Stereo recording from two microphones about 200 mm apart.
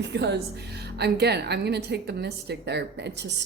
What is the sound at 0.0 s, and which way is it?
A woman's voice, 60° right (ahead or behind).